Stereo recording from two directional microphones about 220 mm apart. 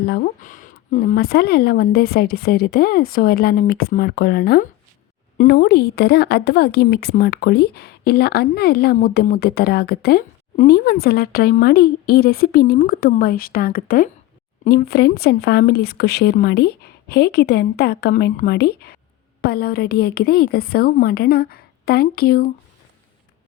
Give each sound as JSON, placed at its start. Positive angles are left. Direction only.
{"t": 0.0, "sound": "speech", "side_deg": 45}